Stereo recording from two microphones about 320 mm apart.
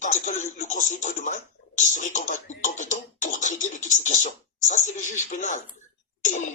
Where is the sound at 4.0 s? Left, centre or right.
Left.